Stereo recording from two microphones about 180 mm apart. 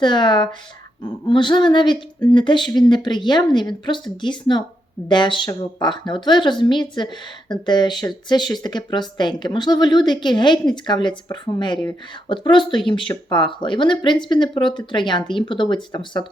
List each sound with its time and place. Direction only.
0.0 s speech: 25° left (ahead or behind)